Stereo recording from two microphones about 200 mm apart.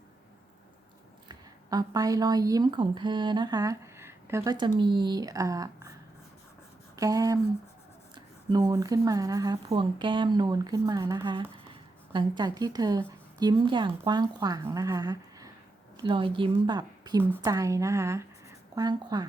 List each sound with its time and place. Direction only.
1.3 s speech: 20° right (ahead or behind)
6.9 s a sound: 15° right (ahead or behind)
8.1 s a woman's voice: 20° right (ahead or behind)